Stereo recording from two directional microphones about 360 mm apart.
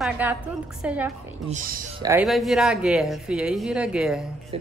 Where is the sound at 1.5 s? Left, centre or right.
Right.